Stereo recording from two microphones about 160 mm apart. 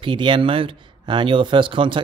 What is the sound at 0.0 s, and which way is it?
A man's voice, 30° right (ahead or behind).